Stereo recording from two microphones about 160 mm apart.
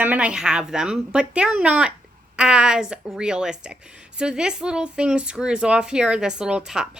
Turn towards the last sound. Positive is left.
turn(degrees=-5)  # may be behind; listen again after turning